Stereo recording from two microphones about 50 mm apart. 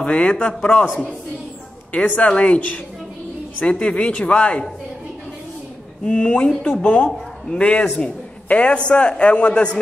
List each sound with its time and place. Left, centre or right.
0.0 s a man's voice: left
1.9 s a man's voice: left
3.8 s a man's voice: left
6.0 s a man's voice: left
6.6 s speech: left
7.1 s a man's voice: centre